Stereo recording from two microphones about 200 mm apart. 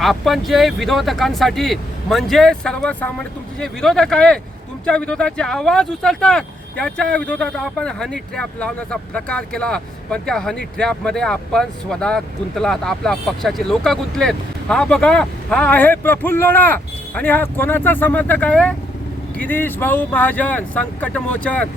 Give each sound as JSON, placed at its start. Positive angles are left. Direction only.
{"t": 0.0, "sound": "speech", "side_deg": 0}